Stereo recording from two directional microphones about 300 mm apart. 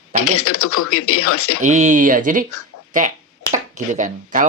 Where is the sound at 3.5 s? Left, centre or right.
Right.